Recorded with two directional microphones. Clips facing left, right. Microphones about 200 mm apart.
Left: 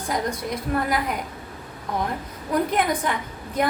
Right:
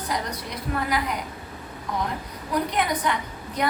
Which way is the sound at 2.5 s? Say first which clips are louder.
Left 3 dB; 50° left (ahead or behind).